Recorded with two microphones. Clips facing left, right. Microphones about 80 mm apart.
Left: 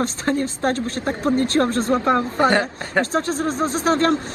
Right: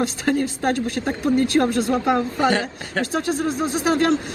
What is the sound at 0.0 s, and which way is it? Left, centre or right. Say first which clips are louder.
Speech: even; left.